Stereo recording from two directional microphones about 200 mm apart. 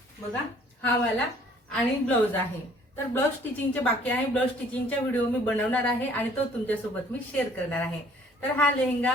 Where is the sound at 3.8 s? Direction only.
5° left (ahead or behind).